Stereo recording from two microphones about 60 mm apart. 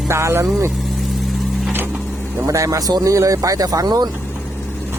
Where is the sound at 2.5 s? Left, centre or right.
Right.